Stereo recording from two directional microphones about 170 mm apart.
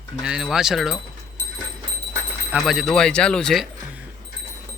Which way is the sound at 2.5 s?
Centre (ahead or behind).